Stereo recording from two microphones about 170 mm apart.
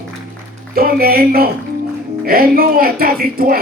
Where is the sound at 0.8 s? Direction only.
60° right (ahead or behind).